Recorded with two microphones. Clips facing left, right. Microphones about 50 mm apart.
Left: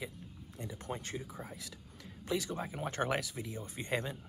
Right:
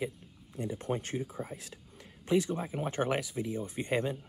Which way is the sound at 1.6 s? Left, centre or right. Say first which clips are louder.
Even; right.